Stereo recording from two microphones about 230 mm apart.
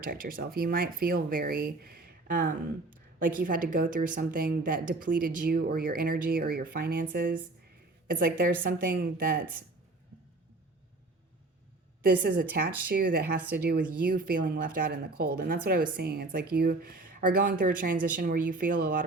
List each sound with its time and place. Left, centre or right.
0.0 s speech: right
12.0 s a woman's voice: right